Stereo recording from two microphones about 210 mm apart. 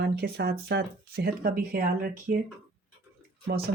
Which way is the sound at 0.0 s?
50° right (ahead or behind).